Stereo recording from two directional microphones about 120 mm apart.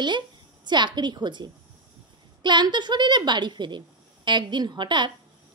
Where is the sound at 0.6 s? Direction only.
40° right (ahead or behind).